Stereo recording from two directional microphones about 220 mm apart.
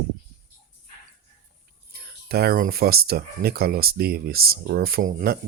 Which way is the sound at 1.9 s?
45° right (ahead or behind).